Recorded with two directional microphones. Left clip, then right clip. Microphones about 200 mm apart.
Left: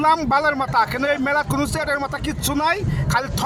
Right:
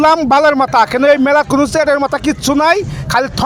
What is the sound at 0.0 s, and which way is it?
Speech, 40° right (ahead or behind).